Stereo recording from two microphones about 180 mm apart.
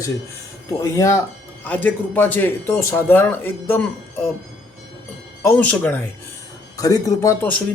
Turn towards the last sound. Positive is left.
turn(degrees=10)  # may be behind; listen again after turning